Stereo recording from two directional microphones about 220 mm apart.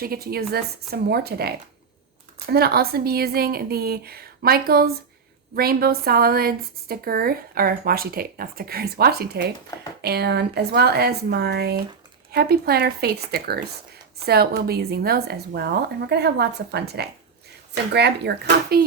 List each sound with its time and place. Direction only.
0.0 s a woman's voice: 45° right (ahead or behind)